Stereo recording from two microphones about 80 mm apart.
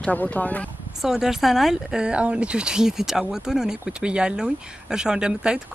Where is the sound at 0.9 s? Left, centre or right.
Centre.